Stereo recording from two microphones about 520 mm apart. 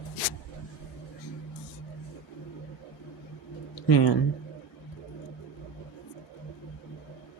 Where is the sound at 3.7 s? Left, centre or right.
Left.